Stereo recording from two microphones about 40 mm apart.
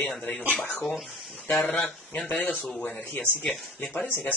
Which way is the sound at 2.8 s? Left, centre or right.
Left.